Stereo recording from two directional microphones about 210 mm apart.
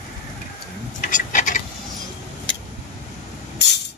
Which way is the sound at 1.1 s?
35° left (ahead or behind).